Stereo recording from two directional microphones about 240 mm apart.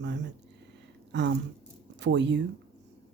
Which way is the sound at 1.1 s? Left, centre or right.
Right.